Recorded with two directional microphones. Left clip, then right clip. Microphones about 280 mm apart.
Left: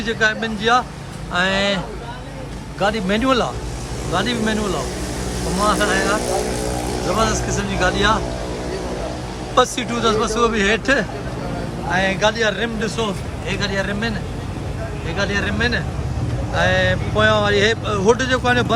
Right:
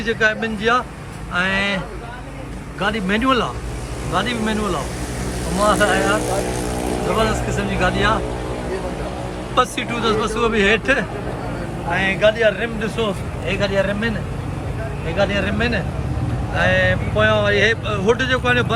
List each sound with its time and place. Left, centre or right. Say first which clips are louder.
0.0 s speech: right 1 dB; centre
2.8 s speech: left 1 dB; centre
9.6 s speech: left 2 dB; centre
12.2 s speech: right 2 dB; centre
15.1 s speech: right 2 dB; centre